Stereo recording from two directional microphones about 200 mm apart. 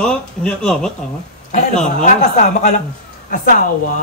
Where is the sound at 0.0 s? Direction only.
5° left (ahead or behind).